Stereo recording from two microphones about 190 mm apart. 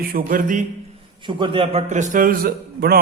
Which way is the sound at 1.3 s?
25° right (ahead or behind).